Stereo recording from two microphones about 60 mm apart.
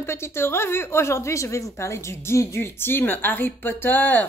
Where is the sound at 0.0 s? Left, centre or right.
Left.